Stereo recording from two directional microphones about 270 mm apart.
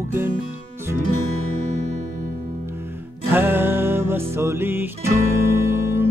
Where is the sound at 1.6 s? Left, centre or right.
Right.